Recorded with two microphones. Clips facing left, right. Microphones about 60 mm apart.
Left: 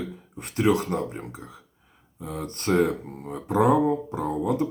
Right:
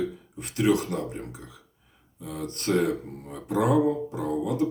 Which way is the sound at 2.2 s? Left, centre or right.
Left.